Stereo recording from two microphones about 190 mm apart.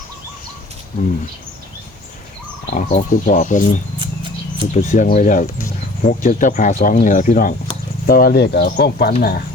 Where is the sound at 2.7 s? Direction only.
40° left (ahead or behind).